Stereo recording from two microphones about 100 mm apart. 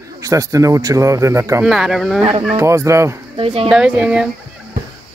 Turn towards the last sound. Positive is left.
turn(degrees=-10)  # may be behind; listen again after turning